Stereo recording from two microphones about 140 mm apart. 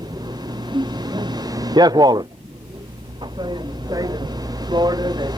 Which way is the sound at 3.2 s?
30° right (ahead or behind).